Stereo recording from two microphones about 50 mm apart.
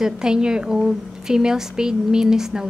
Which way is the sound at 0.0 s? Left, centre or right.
Centre.